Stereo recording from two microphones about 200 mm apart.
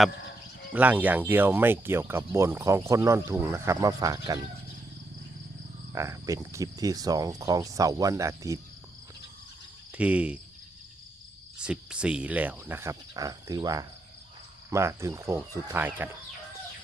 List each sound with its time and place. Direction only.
0.7 s speech: 10° right (ahead or behind)
5.9 s speech: 15° right (ahead or behind)
9.9 s speech: 5° right (ahead or behind)
11.6 s speech: 5° right (ahead or behind)